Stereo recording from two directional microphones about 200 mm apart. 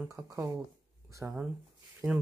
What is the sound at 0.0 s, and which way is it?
Speech, 15° right (ahead or behind).